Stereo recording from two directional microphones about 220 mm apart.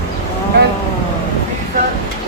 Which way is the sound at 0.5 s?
50° right (ahead or behind).